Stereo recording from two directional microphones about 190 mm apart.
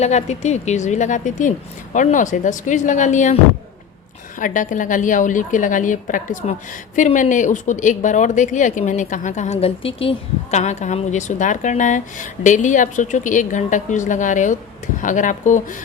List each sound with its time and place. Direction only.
0.0 s a woman's voice: 35° left (ahead or behind)
4.4 s a woman's voice: 45° left (ahead or behind)